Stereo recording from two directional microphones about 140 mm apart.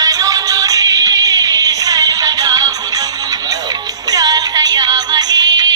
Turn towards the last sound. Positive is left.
turn(degrees=-30)  # may be behind; listen again after turning